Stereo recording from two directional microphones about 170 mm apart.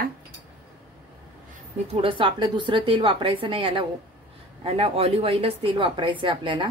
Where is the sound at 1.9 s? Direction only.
30° right (ahead or behind).